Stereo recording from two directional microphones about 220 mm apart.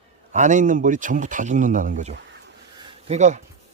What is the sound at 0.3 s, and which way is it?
Speech, 35° right (ahead or behind).